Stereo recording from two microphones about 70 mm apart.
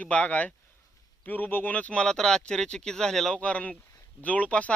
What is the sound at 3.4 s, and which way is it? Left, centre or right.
Speech, centre.